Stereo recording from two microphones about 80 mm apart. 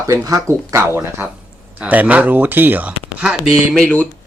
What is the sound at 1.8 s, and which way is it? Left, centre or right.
Speech, centre.